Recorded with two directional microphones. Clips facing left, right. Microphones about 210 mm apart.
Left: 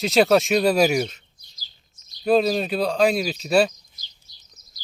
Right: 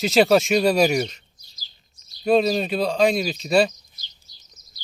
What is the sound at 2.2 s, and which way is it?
Speech, centre (ahead or behind).